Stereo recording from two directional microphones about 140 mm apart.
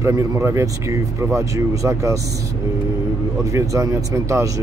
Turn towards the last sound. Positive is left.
turn(degrees=-20)  # may be behind; listen again after turning